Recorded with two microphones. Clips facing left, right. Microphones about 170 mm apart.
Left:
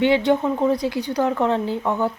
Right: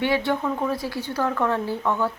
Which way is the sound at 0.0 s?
20° left (ahead or behind).